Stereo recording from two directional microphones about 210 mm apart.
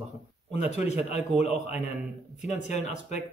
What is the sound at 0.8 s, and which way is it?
Speech, 30° left (ahead or behind).